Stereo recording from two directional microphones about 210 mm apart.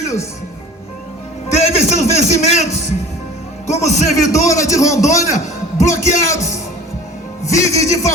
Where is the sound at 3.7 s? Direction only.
30° left (ahead or behind).